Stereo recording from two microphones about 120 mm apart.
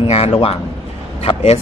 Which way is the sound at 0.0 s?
55° left (ahead or behind).